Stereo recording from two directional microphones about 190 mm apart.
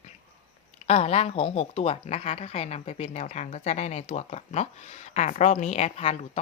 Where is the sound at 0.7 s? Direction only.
35° left (ahead or behind).